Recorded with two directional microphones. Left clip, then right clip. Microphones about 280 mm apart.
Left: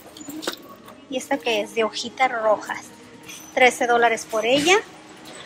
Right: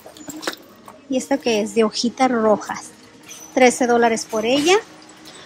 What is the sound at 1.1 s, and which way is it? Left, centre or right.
A woman's voice, centre.